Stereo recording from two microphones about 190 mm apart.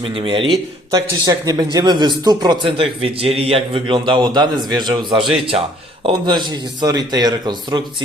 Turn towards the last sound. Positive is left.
turn(degrees=-20)  # may be behind; listen again after turning